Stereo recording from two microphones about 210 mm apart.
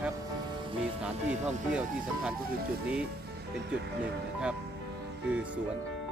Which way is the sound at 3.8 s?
55° right (ahead or behind).